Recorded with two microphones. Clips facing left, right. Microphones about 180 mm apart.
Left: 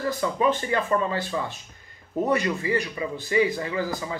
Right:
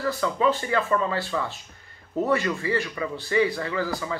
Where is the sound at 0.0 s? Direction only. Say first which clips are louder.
Even; 15° left (ahead or behind).